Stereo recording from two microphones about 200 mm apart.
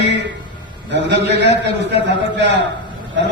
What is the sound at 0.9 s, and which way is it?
A man's voice, 60° right (ahead or behind).